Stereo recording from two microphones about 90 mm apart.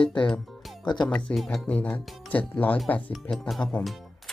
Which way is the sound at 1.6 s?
15° left (ahead or behind).